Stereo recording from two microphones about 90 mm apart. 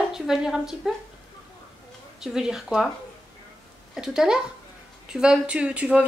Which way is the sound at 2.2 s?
5° right (ahead or behind).